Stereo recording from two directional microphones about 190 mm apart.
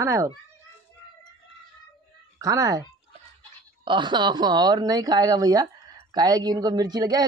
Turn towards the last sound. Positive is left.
turn(degrees=-20)  # may be behind; listen again after turning